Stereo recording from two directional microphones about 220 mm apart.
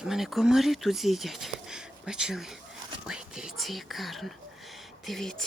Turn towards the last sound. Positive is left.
turn(degrees=0)  # may be behind; listen again after turning